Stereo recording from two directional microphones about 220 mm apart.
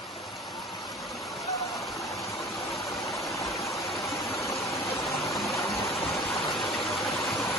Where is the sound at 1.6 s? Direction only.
Centre (ahead or behind).